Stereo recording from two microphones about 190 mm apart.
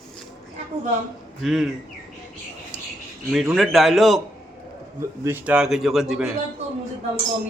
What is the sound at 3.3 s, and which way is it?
Speech, centre (ahead or behind).